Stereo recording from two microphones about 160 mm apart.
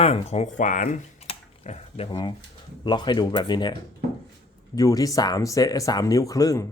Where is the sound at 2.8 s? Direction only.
30° left (ahead or behind).